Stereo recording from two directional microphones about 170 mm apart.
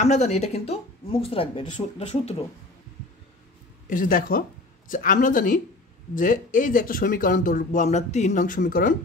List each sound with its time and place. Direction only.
0.0 s speech: 40° left (ahead or behind)
3.9 s speech: 55° left (ahead or behind)